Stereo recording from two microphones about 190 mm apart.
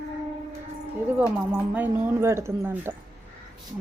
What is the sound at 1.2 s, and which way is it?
Speech, 10° right (ahead or behind).